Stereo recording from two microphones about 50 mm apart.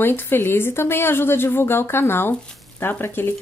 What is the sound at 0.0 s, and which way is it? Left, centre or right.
Speech, left.